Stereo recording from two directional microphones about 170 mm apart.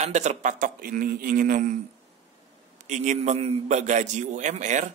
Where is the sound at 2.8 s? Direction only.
45° right (ahead or behind).